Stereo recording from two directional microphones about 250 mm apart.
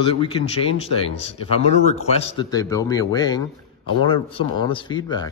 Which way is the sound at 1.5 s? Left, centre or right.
Left.